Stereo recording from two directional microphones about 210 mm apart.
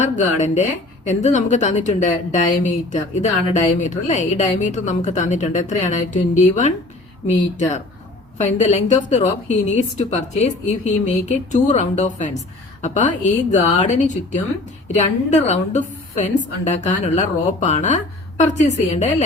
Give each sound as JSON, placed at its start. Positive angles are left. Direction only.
{"t": 0.0, "sound": "speech", "side_deg": 35}
{"t": 7.3, "sound": "speech", "side_deg": 35}